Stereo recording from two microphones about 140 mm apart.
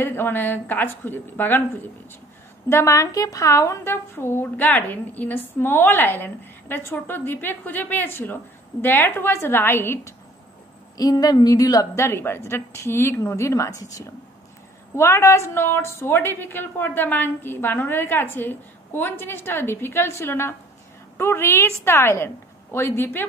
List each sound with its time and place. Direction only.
0.0 s a woman's voice: 15° left (ahead or behind)